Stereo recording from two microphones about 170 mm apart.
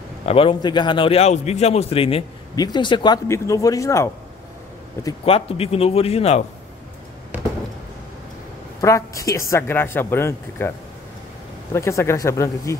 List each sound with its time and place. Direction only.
0.2 s a man's voice: 35° left (ahead or behind); by 4.1 s 15° left (ahead or behind)
5.2 s a man's voice: 35° left (ahead or behind)
8.8 s a woman's voice: 20° left (ahead or behind)
11.7 s a woman's voice: 15° left (ahead or behind)